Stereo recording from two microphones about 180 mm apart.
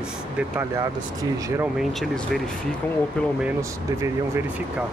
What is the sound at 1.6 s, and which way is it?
Speech, centre (ahead or behind).